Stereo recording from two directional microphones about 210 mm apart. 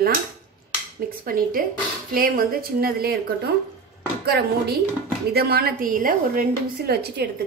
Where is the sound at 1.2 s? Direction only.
40° right (ahead or behind).